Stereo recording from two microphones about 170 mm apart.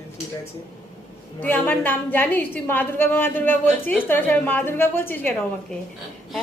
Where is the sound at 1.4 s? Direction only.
10° left (ahead or behind).